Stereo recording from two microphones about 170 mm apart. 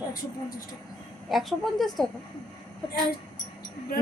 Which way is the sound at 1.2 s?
Centre (ahead or behind).